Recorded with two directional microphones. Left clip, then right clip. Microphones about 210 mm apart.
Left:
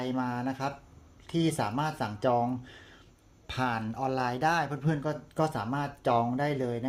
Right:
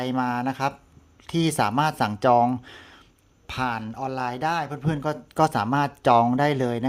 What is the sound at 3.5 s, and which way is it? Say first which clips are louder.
A man's voice: right 4 dB; 15° right (ahead or behind).